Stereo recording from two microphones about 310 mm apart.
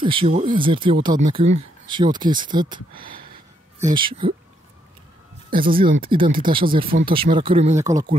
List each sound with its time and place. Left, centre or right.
0.0 s speech: centre
5.6 s speech: centre